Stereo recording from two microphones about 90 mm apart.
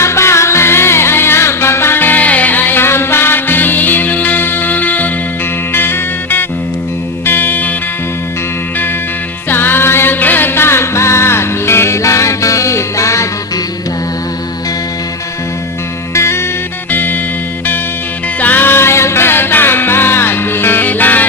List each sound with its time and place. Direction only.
0.0 s music: 30° left (ahead or behind)
9.5 s music: 25° left (ahead or behind)
16.1 s music: 30° left (ahead or behind)
18.3 s music: 20° left (ahead or behind)